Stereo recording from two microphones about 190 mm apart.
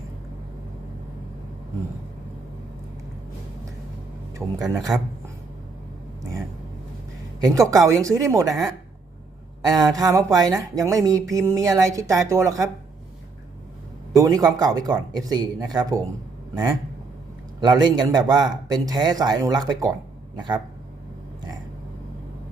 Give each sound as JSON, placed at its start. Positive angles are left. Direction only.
{"t": 4.4, "sound": "speech", "side_deg": -10}
{"t": 7.4, "sound": "speech", "side_deg": -15}
{"t": 8.4, "sound": "speech", "side_deg": 0}
{"t": 9.6, "sound": "a man's voice", "side_deg": -20}
{"t": 14.2, "sound": "a man's voice", "side_deg": -20}
{"t": 17.6, "sound": "a man's voice", "side_deg": -20}